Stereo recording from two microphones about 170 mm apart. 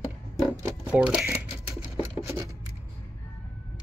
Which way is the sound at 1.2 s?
15° right (ahead or behind).